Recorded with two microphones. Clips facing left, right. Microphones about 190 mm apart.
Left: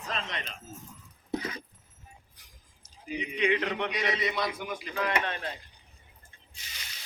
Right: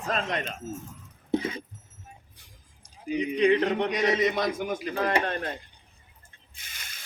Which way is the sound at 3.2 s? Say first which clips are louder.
Right 6 dB; 35° right (ahead or behind).